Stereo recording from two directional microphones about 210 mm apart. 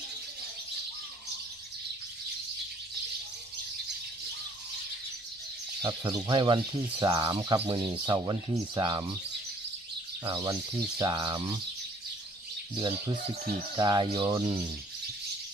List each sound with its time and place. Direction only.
6.2 s speech: 20° right (ahead or behind)
10.2 s speech: 20° right (ahead or behind)
12.7 s speech: 20° right (ahead or behind)